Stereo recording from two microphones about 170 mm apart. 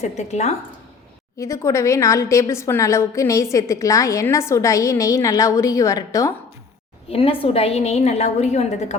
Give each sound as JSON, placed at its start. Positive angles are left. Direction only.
{"t": 0.0, "sound": "a woman's voice", "side_deg": 40}
{"t": 1.4, "sound": "a woman's voice", "side_deg": 15}
{"t": 7.1, "sound": "a woman's voice", "side_deg": 35}